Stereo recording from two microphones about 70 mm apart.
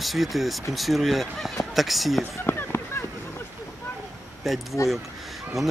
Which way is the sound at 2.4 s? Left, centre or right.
Left.